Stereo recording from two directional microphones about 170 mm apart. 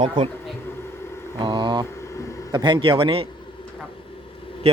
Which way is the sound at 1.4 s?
25° right (ahead or behind).